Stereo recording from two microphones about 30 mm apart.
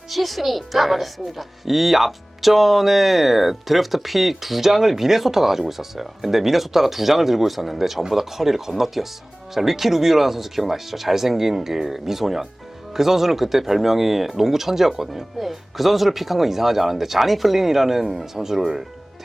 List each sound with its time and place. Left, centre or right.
0.1 s speech: centre